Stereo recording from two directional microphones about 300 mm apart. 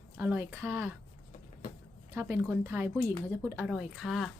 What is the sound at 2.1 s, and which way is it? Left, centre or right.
A woman's voice, centre.